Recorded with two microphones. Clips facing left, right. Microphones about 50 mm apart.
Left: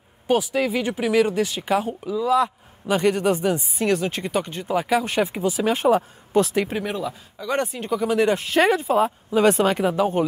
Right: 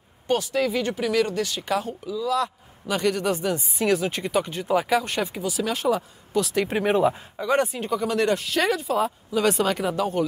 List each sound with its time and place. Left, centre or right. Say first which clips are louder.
0.3 s speech: left 2 dB; centre; by 3.6 s left
3.7 s speech: left 1 dB; centre
5.3 s speech: left 5 dB; left
6.9 s speech: right 7 dB; right
7.4 s speech: right 2 dB; centre
8.4 s speech: left 5 dB; left